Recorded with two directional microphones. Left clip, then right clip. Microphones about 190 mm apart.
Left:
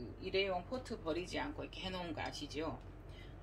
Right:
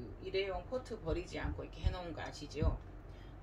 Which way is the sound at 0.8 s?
45° left (ahead or behind).